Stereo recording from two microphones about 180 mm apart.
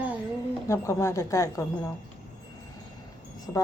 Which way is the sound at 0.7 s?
15° left (ahead or behind).